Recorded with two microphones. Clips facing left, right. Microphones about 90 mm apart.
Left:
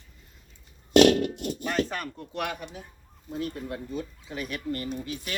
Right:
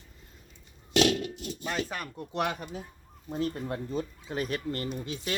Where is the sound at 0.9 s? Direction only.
55° left (ahead or behind).